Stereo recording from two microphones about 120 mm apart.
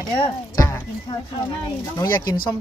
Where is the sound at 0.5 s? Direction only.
30° left (ahead or behind).